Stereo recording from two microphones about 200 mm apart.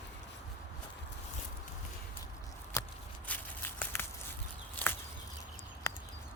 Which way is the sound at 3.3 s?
10° left (ahead or behind).